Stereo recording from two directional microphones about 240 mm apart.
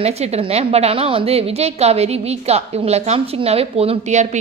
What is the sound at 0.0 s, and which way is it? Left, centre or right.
A woman's voice, right.